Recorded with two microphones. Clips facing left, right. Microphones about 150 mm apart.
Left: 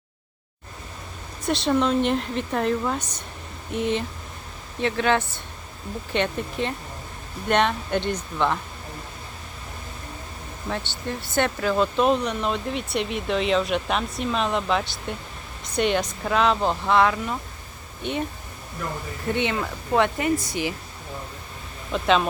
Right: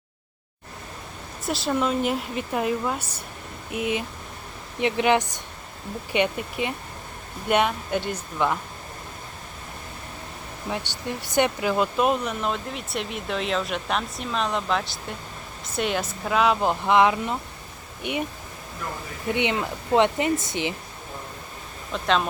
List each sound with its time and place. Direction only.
1.5 s speech: 5° right (ahead or behind)
10.7 s speech: 15° right (ahead or behind)
19.3 s speech: 15° right (ahead or behind)
21.9 s speech: centre (ahead or behind)